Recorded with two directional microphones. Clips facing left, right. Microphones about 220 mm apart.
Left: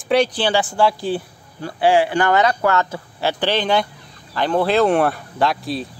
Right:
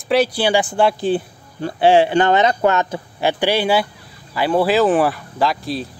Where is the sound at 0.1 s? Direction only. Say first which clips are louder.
Right 1 dB; 5° right (ahead or behind).